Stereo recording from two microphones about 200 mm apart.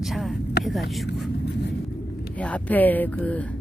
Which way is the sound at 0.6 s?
55° left (ahead or behind).